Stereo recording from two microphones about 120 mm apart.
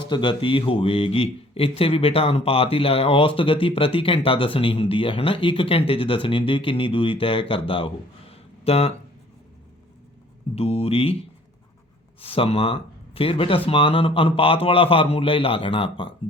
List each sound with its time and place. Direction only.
0.1 s a man's voice: 40° left (ahead or behind); by 8.9 s 55° left (ahead or behind)
10.5 s speech: 60° left (ahead or behind)
12.2 s a man's voice: 50° left (ahead or behind)